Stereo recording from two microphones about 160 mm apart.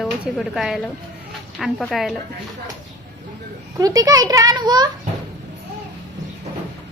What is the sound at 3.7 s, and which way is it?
A child's voice, 20° right (ahead or behind).